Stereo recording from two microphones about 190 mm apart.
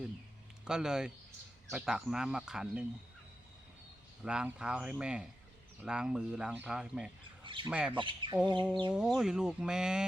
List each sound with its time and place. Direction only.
0.6 s speech: 5° right (ahead or behind)
4.2 s speech: 5° right (ahead or behind)
7.4 s squawk: 25° right (ahead or behind)
7.7 s speech: 5° right (ahead or behind)
7.9 s speech: 25° right (ahead or behind)
8.9 s speech: 5° right (ahead or behind)